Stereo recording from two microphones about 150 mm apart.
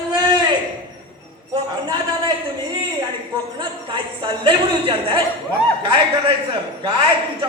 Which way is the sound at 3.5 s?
35° right (ahead or behind).